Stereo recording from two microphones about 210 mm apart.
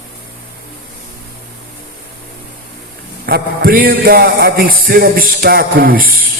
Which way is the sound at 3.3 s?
45° right (ahead or behind).